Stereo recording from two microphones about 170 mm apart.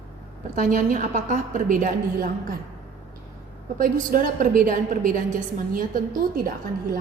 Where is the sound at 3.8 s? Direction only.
50° right (ahead or behind).